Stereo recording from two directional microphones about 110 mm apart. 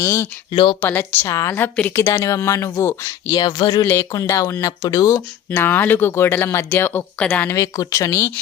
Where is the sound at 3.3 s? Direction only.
45° left (ahead or behind).